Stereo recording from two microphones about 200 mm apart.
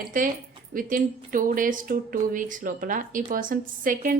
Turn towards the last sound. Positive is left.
turn(degrees=-40)  # may be behind; listen again after turning